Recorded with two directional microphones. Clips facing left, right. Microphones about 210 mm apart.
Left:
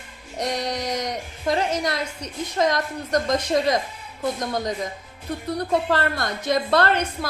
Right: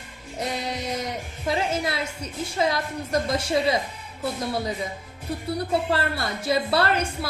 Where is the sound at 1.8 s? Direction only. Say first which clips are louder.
Left 2 dB; 5° right (ahead or behind).